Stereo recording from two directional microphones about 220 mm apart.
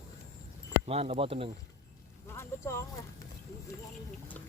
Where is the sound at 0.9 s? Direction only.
25° right (ahead or behind).